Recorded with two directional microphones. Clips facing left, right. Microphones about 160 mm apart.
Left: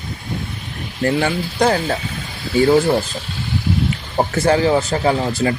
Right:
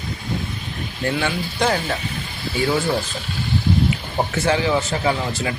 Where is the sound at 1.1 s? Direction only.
40° left (ahead or behind).